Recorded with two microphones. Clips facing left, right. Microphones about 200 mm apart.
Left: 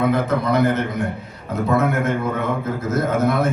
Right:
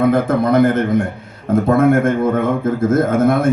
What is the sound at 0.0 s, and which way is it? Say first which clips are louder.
A man's voice: right 5 dB; 50° right (ahead or behind).